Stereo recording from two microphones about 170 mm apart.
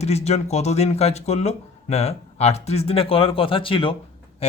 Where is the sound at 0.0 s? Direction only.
40° left (ahead or behind).